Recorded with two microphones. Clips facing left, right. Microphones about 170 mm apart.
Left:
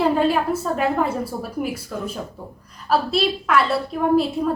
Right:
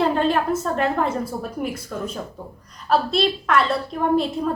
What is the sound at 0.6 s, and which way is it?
A woman's voice, 5° left (ahead or behind).